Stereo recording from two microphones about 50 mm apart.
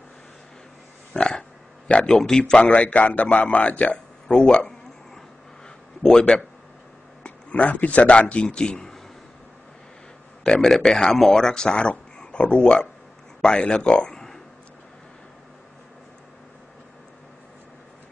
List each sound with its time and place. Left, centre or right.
1.1 s a sound: centre
1.9 s a man's voice: centre
6.0 s a man's voice: centre
7.2 s a man's voice: left
10.4 s a man's voice: centre
14.0 s a sound: centre